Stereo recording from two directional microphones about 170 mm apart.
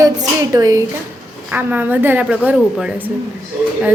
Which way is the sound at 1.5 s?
10° right (ahead or behind).